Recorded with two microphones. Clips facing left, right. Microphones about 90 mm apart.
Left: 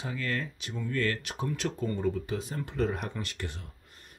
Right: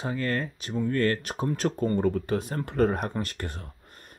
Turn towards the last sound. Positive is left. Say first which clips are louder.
# right 5 dB
turn(degrees=-45)  # may be behind; listen again after turning